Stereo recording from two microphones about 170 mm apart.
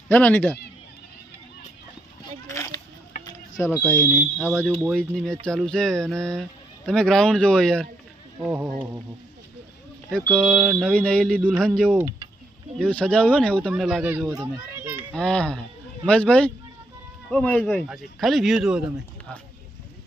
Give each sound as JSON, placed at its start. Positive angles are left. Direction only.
{"t": 0.1, "sound": "speech", "side_deg": 10}
{"t": 2.5, "sound": "children playing", "side_deg": 15}
{"t": 3.6, "sound": "speech", "side_deg": 15}
{"t": 4.4, "sound": "speech", "side_deg": -5}
{"t": 8.4, "sound": "a sound", "side_deg": -15}
{"t": 10.1, "sound": "a child's voice", "side_deg": 5}
{"t": 15.1, "sound": "speech", "side_deg": 5}